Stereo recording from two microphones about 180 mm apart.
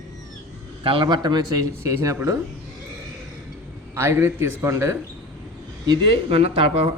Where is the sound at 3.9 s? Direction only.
10° right (ahead or behind).